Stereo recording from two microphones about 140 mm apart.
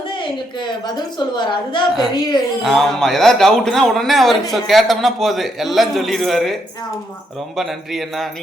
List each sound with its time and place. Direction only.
0.1 s a woman's voice: 35° left (ahead or behind)
2.6 s a man's voice: centre (ahead or behind)